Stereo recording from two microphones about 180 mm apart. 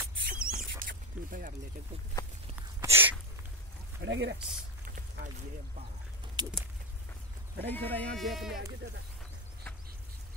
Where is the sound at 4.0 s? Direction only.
80° right.